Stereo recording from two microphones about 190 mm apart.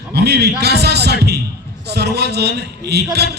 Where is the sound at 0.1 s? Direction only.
60° right (ahead or behind).